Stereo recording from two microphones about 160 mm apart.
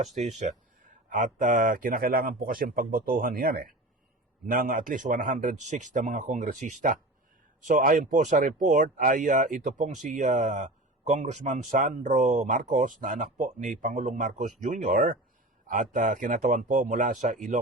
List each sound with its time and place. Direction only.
0.0 s a man's voice: 50° right (ahead or behind)